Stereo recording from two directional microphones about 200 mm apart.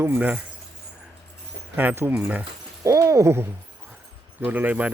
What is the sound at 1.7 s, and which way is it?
Speech, 10° right (ahead or behind).